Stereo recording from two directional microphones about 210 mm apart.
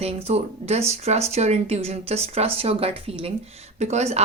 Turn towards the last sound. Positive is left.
turn(degrees=-30)  # may be behind; listen again after turning